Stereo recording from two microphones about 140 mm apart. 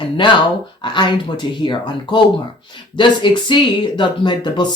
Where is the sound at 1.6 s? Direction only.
35° left (ahead or behind).